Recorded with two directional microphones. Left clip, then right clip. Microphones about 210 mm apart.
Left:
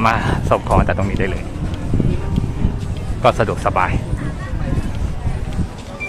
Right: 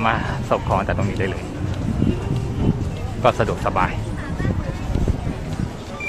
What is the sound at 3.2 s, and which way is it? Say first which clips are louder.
Speech: left 3 dB; 15° left (ahead or behind).